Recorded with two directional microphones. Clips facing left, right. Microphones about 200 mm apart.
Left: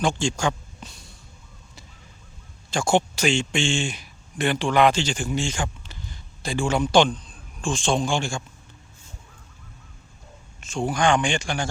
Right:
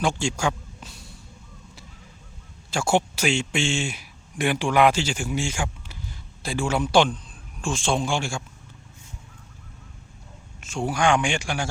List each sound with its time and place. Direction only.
0.0 s speech: 10° right (ahead or behind)
2.6 s a man's voice: 5° right (ahead or behind)
10.6 s a man's voice: 5° right (ahead or behind)